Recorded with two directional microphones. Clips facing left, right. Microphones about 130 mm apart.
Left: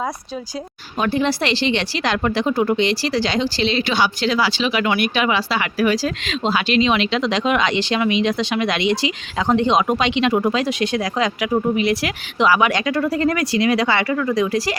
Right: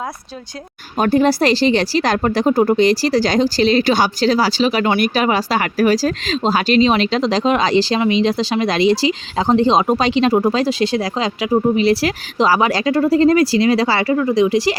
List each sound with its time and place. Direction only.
0.9 s speech: 45° right (ahead or behind); by 14.8 s 25° right (ahead or behind)